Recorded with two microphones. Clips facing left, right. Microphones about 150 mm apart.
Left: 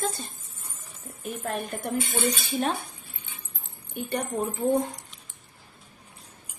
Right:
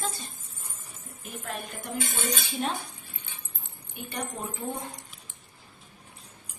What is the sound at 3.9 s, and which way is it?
Speech, 45° left (ahead or behind).